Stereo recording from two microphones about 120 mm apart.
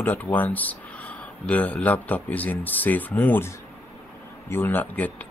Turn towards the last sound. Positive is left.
turn(degrees=15)  # may be behind; listen again after turning